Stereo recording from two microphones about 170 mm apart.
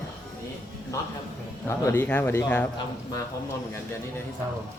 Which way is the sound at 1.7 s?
15° left (ahead or behind).